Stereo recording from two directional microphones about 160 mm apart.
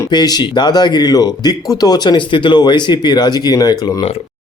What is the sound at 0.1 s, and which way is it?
Speech, 25° left (ahead or behind).